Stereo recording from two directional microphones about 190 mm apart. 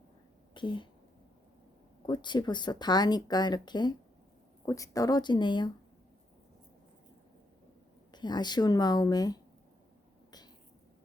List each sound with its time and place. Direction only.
0.5 s speech: 25° left (ahead or behind)
2.0 s speech: 25° left (ahead or behind)
8.1 s speech: 20° left (ahead or behind)